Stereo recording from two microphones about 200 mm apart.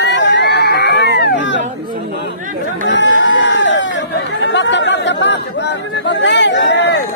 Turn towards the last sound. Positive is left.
turn(degrees=60)  # may be behind; listen again after turning